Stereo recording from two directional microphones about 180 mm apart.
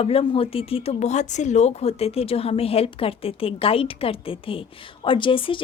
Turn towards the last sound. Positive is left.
turn(degrees=30)  # may be behind; listen again after turning